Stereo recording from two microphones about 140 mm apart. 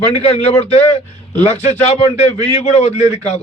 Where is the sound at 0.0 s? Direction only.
45° left (ahead or behind).